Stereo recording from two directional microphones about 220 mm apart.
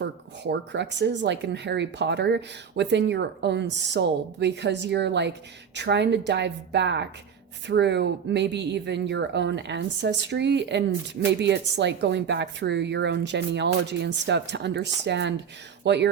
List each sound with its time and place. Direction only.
0.0 s speech: 50° right (ahead or behind)